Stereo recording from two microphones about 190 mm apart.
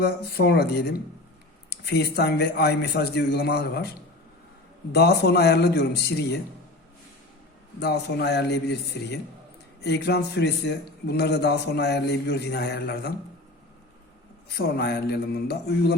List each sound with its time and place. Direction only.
0.0 s a man's voice: 55° left (ahead or behind)
4.9 s a man's voice: 60° left (ahead or behind)
7.8 s a man's voice: 60° left (ahead or behind)
14.5 s a man's voice: 55° left (ahead or behind)